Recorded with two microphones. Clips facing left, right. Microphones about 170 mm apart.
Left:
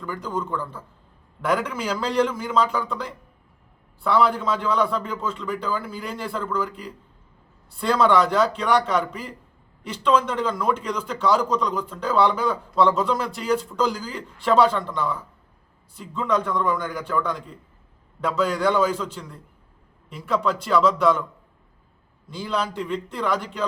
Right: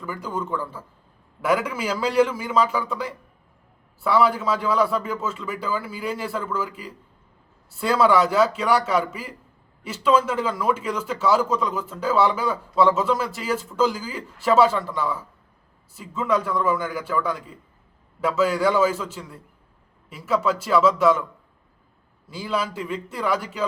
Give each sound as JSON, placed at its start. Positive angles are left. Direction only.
{"t": 0.0, "sound": "a man's voice", "side_deg": -10}
{"t": 22.3, "sound": "speech", "side_deg": -5}